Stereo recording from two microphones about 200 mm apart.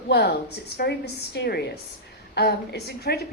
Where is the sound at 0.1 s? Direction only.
55° left (ahead or behind).